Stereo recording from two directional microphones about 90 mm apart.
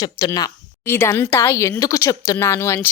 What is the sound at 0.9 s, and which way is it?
Speech, 25° left (ahead or behind).